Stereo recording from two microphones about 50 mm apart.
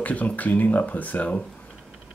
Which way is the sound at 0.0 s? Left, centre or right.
Left.